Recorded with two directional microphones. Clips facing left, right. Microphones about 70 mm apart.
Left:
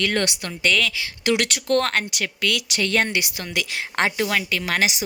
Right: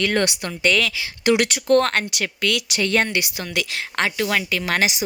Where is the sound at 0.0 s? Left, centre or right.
Centre.